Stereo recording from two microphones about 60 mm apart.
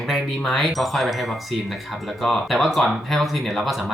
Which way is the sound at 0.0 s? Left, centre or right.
Centre.